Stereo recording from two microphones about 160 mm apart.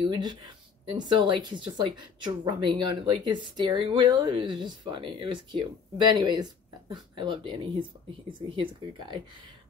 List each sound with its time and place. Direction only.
0.1 s speech: 30° right (ahead or behind)